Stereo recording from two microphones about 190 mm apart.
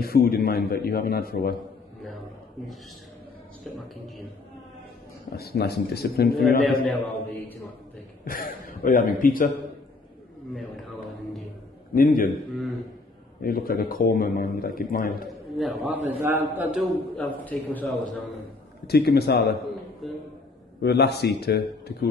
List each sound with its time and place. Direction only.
0.0 s speech: 50° left (ahead or behind)
5.3 s speech: 55° left (ahead or behind)
6.6 s a man's voice: 5° left (ahead or behind)
8.3 s speech: 50° left (ahead or behind)
10.5 s speech: centre (ahead or behind)
11.9 s speech: 45° left (ahead or behind)
12.5 s speech: centre (ahead or behind)
13.4 s speech: 50° left (ahead or behind)
15.5 s a man's voice: centre (ahead or behind)
17.2 s speech: 5° left (ahead or behind)
18.9 s speech: 55° left (ahead or behind)
20.0 s a sound: centre (ahead or behind)
20.8 s speech: 60° left (ahead or behind)